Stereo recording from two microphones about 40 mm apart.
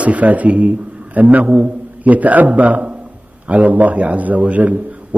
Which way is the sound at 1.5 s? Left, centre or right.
Right.